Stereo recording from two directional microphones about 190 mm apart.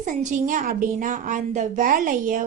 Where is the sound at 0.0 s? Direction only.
40° right (ahead or behind).